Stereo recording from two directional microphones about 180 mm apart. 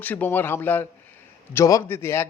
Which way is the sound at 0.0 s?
10° left (ahead or behind).